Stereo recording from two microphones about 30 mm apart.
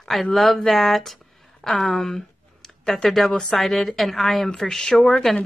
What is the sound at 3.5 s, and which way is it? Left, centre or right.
Speech, centre.